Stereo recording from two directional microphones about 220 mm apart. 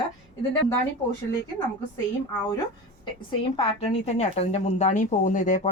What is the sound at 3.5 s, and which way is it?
Speech, 30° left (ahead or behind).